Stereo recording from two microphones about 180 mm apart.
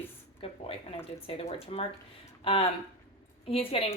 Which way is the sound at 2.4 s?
30° left (ahead or behind).